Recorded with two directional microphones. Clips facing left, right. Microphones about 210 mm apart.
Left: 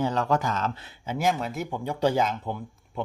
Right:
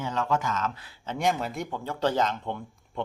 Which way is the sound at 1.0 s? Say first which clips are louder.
Left 1 dB; 5° left (ahead or behind).